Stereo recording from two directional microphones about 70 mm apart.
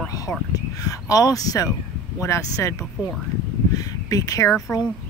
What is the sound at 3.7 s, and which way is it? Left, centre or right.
Speech, left.